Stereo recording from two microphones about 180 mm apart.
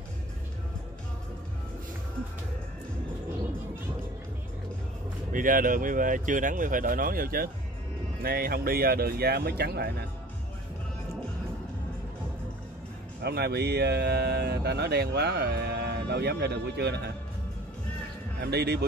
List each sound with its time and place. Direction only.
5.3 s speech: 50° right (ahead or behind)
13.2 s speech: 65° right (ahead or behind)
18.4 s speech: 65° right (ahead or behind)